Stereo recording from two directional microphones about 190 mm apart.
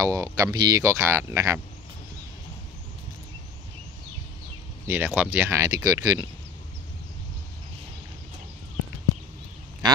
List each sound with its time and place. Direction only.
0.0 s speech: 15° right (ahead or behind)
4.8 s speech: 10° right (ahead or behind)